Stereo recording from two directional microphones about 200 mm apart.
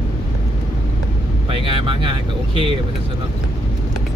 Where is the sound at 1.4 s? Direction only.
25° right (ahead or behind).